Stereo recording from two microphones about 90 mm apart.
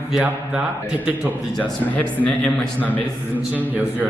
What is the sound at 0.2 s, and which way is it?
A man's voice, 15° right (ahead or behind).